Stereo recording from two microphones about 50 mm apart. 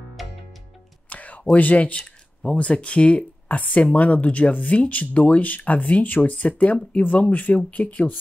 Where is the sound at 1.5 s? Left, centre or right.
Left.